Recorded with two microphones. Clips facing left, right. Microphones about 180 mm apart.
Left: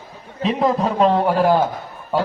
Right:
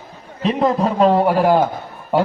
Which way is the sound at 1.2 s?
10° right (ahead or behind).